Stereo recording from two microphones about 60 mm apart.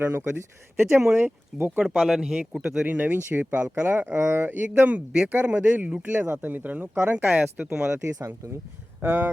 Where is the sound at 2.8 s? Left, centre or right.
Right.